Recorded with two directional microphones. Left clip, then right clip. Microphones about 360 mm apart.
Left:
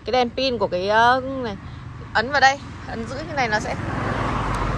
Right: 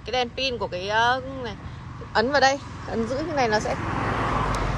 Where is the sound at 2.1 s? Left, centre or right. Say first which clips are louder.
Left 3 dB; centre.